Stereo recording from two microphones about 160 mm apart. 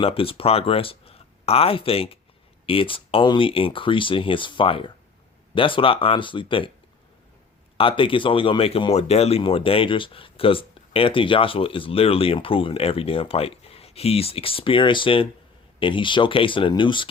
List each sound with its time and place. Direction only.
0.0 s speech: 35° left (ahead or behind)
7.8 s speech: 35° left (ahead or behind)